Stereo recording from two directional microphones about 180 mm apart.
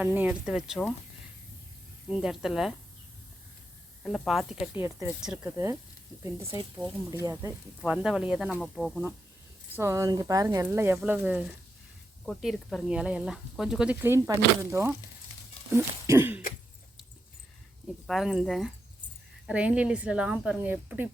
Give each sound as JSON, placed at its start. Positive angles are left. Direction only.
{"t": 0.0, "sound": "speech", "side_deg": -10}
{"t": 2.0, "sound": "speech", "side_deg": -5}
{"t": 4.0, "sound": "speech", "side_deg": 0}
{"t": 7.8, "sound": "speech", "side_deg": -5}
{"t": 9.7, "sound": "speech", "side_deg": -15}
{"t": 18.0, "sound": "speech", "side_deg": 0}